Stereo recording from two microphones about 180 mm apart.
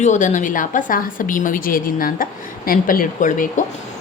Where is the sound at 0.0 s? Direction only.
40° left (ahead or behind).